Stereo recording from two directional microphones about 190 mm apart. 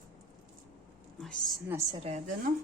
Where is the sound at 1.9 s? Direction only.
35° right (ahead or behind).